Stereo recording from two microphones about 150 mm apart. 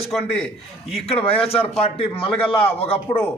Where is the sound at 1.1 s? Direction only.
40° left (ahead or behind).